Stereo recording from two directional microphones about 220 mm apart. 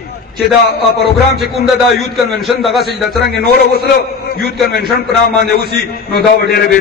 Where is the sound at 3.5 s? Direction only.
45° left (ahead or behind).